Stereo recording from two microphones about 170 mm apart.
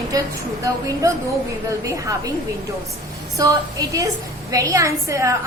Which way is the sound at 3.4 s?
20° right (ahead or behind).